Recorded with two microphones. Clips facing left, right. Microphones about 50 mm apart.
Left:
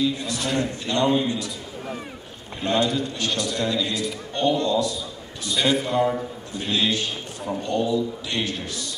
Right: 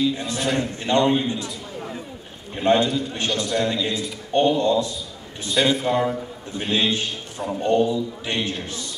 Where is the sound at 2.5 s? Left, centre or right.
Right.